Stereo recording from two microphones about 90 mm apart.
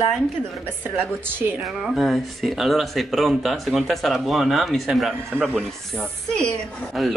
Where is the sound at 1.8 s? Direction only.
Centre (ahead or behind).